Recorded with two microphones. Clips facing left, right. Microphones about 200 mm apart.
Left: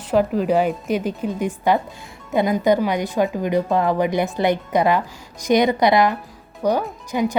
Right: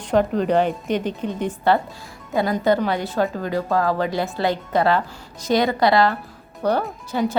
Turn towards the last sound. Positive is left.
turn(degrees=15)  # may be behind; listen again after turning